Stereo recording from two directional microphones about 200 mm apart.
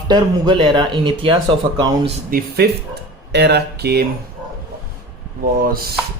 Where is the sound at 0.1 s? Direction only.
25° right (ahead or behind).